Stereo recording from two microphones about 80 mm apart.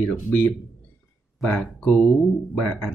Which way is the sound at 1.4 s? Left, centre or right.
Centre.